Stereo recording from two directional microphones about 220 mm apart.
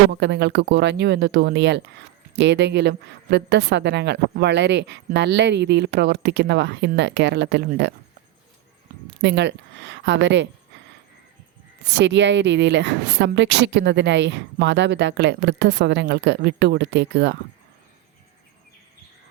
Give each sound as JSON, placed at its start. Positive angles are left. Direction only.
{"t": 0.1, "sound": "speech", "side_deg": -50}
{"t": 9.2, "sound": "speech", "side_deg": -50}
{"t": 11.9, "sound": "speech", "side_deg": -55}